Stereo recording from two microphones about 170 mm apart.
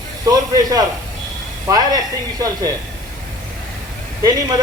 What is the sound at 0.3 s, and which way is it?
Speech, 20° right (ahead or behind).